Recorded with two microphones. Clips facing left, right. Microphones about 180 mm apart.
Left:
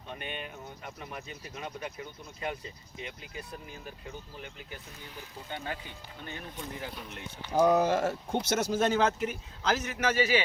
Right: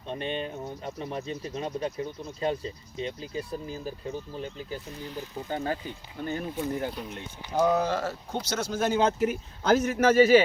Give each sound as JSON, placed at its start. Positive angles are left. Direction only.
{"t": 0.1, "sound": "speech", "side_deg": -30}
{"t": 7.5, "sound": "speech", "side_deg": 15}
{"t": 8.3, "sound": "speech", "side_deg": 50}
{"t": 8.9, "sound": "speech", "side_deg": -25}
{"t": 9.2, "sound": "speech", "side_deg": -55}